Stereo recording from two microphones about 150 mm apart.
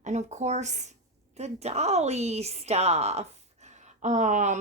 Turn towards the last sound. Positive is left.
turn(degrees=-55)  # may be behind; listen again after turning